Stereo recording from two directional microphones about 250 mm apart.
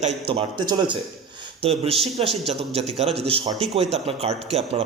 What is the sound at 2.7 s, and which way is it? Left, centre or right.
A man's voice, right.